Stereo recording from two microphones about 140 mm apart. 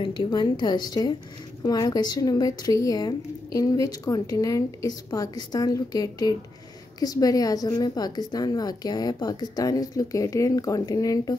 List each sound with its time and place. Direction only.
0.0 s a woman's voice: 35° left (ahead or behind)